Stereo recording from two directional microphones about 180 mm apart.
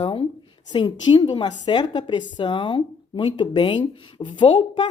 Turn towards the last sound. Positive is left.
turn(degrees=30)  # may be behind; listen again after turning